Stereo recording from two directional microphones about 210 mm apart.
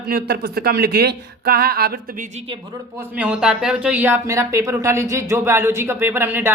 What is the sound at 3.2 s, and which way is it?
Speech, 5° right (ahead or behind).